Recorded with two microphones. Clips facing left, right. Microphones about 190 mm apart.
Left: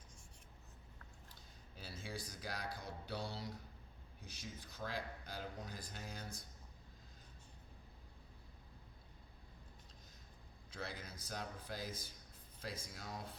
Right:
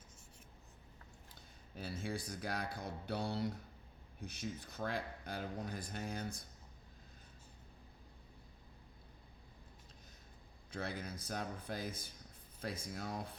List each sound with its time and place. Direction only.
1.7 s speech: 55° right (ahead or behind)
10.7 s speech: 55° right (ahead or behind)